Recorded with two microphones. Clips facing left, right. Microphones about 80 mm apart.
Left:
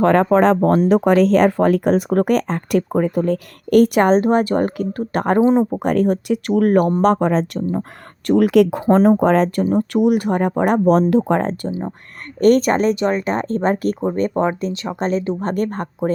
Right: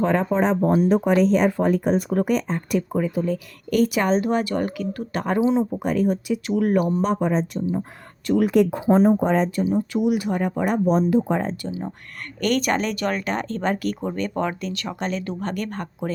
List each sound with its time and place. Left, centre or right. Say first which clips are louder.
0.0 s speech: left 7 dB; left
0.9 s speech: left 5 dB; left
9.6 s speech: left 5 dB; left
11.7 s speech: left 5 dB; left